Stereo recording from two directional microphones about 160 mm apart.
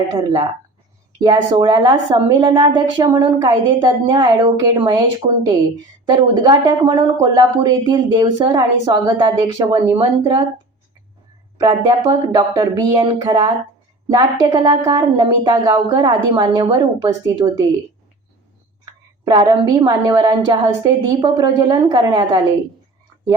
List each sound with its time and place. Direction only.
1.2 s speech: 25° right (ahead or behind)
11.5 s speech: 25° right (ahead or behind)
19.2 s speech: 25° right (ahead or behind)